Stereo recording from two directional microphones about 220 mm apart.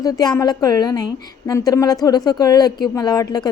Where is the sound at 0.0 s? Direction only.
15° left (ahead or behind).